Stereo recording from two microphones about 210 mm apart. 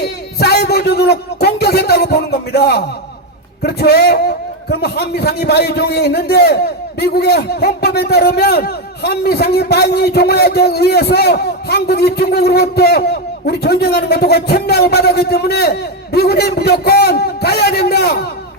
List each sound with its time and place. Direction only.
0.0 s a man's voice: 50° left (ahead or behind)